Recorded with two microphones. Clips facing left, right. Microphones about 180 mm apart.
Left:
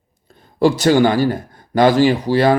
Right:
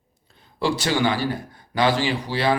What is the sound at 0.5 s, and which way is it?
Speech, 45° left (ahead or behind).